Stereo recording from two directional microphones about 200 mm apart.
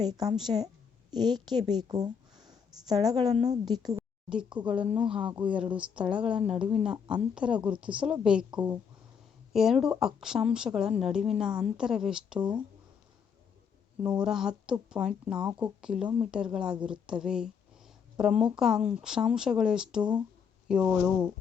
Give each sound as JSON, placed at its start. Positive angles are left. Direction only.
{"t": 0.0, "sound": "a woman's voice", "side_deg": -20}
{"t": 4.3, "sound": "speech", "side_deg": -5}
{"t": 14.0, "sound": "speech", "side_deg": -5}